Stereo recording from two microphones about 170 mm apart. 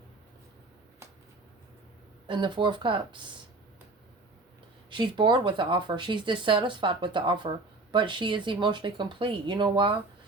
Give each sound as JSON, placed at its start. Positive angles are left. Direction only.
{"t": 2.2, "sound": "speech", "side_deg": -30}
{"t": 4.9, "sound": "speech", "side_deg": -30}